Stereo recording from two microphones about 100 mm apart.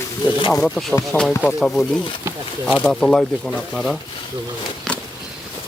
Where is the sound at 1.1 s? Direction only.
20° right (ahead or behind).